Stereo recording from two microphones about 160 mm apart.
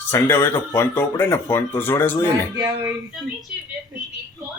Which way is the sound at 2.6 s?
20° right (ahead or behind).